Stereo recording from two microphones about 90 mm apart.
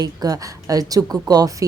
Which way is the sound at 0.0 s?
45° right (ahead or behind).